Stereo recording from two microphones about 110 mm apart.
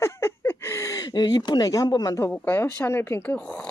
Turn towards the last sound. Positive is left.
turn(degrees=15)  # may be behind; listen again after turning